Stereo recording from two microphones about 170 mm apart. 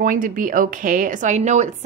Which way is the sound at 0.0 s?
50° right (ahead or behind).